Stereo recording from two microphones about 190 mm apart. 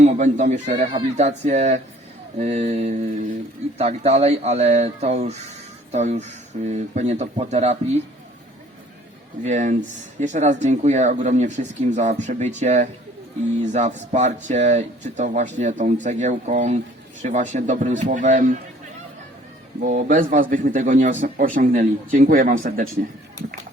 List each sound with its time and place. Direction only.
0.0 s speech: 40° right (ahead or behind)
9.4 s speech: 40° right (ahead or behind)
19.8 s a man's voice: 45° right (ahead or behind)